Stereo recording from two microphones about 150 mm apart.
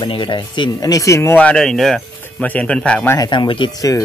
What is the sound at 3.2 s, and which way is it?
Speech, 30° left (ahead or behind).